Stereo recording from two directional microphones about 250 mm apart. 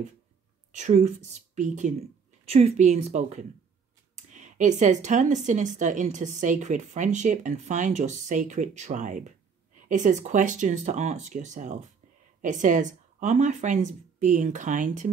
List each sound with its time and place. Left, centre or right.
0.7 s speech: right